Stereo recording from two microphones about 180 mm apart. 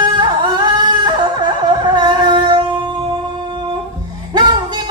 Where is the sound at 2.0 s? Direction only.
25° right (ahead or behind).